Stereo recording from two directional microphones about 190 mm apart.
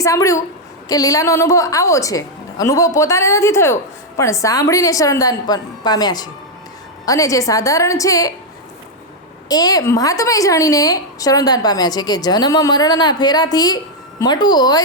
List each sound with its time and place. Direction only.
0.0 s a woman's voice: 15° left (ahead or behind)
9.5 s a woman's voice: 20° left (ahead or behind)